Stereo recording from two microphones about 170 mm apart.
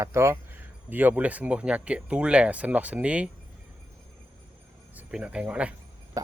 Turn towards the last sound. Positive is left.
turn(degrees=-20)  # may be behind; listen again after turning